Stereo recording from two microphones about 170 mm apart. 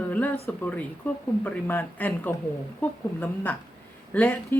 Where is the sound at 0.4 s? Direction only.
10° left (ahead or behind).